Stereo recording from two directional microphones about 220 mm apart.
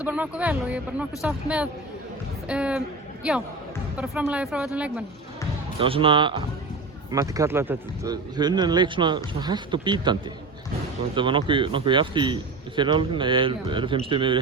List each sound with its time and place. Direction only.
0.0 s speech: 5° right (ahead or behind)
3.9 s speech: 5° right (ahead or behind)
5.8 s a man's voice: 25° right (ahead or behind)